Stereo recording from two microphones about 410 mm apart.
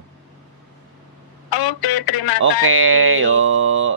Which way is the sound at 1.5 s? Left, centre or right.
Left.